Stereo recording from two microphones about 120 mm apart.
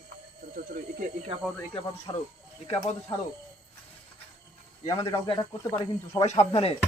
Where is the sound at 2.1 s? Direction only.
40° left (ahead or behind).